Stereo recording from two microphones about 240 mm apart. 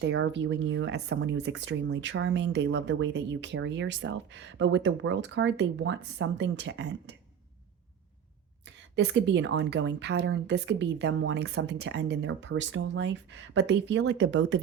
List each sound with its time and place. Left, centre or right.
0.0 s speech: right
8.6 s speech: right